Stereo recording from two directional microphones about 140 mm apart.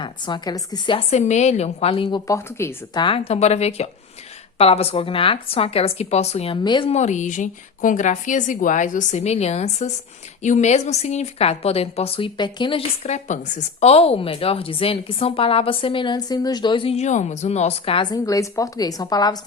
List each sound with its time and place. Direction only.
0.0 s a woman's voice: 30° left (ahead or behind)
0.9 s a woman's voice: 55° left (ahead or behind)
2.2 s a woman's voice: 20° left (ahead or behind)
2.9 s a woman's voice: 35° left (ahead or behind)
6.9 s a woman's voice: 55° left (ahead or behind); by 12.8 s 35° left (ahead or behind)
13.1 s a woman's voice: 55° left (ahead or behind); by 18.1 s 40° left (ahead or behind)
18.1 s a woman's voice: 25° left (ahead or behind)